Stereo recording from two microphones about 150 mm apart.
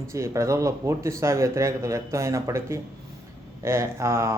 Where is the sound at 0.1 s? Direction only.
20° right (ahead or behind).